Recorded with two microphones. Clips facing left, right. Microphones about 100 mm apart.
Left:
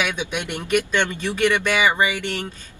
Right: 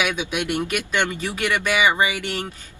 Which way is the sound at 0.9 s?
15° right (ahead or behind).